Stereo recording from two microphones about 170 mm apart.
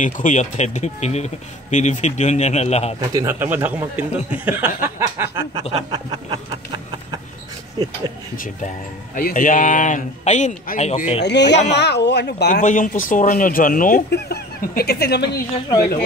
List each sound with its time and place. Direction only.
0.0 s speech: 45° left (ahead or behind)
3.0 s speech: 20° right (ahead or behind)
9.1 s speech: 50° left (ahead or behind)
11.2 s speech: 90° left
12.4 s speech: 45° left (ahead or behind); by 15.3 s 75° left (ahead or behind)